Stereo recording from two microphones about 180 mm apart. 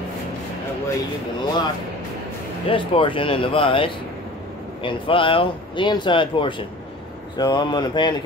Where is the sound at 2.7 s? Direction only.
30° left (ahead or behind).